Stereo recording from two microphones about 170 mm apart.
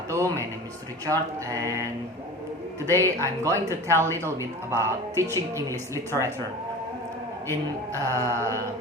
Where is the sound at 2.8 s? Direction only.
15° right (ahead or behind).